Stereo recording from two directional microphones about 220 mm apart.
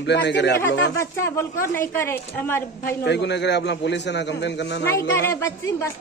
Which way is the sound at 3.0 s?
50° left (ahead or behind).